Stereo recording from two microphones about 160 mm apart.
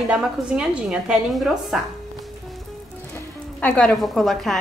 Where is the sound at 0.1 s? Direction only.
5° right (ahead or behind).